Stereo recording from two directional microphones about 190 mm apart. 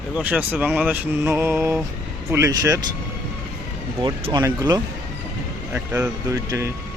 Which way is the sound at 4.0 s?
25° right (ahead or behind).